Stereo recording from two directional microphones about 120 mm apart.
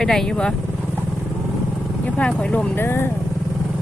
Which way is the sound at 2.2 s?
10° left (ahead or behind).